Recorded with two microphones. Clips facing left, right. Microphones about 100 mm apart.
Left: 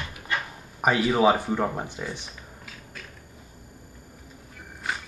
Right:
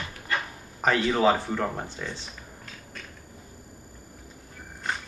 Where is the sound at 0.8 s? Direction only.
10° left (ahead or behind).